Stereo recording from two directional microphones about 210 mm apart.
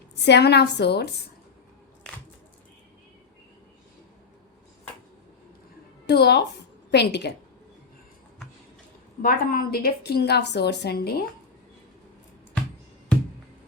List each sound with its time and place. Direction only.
0.3 s a woman's voice: 55° left (ahead or behind)
6.1 s a woman's voice: 50° left (ahead or behind)
9.2 s a woman's voice: 45° left (ahead or behind)